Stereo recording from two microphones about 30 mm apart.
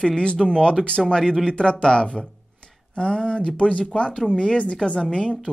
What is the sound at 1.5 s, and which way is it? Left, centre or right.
Speech, left.